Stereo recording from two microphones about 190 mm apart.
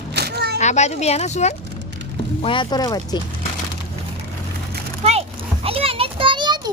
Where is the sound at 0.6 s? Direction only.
35° left (ahead or behind).